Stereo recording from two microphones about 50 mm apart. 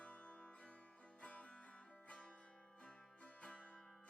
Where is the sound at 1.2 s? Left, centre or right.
Left.